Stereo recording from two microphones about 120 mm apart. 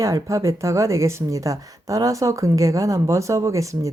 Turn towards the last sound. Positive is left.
turn(degrees=-25)  # may be behind; listen again after turning